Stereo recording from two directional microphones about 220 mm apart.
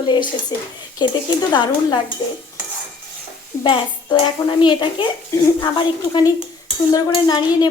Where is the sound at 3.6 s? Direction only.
20° left (ahead or behind).